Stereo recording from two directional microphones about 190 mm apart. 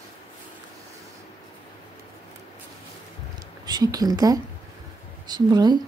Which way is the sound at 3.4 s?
20° right (ahead or behind).